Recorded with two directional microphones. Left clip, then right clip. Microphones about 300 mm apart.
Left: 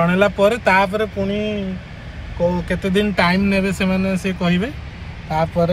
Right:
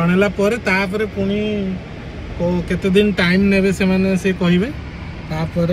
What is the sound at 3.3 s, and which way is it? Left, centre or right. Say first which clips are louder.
Speech: right 3 dB; left.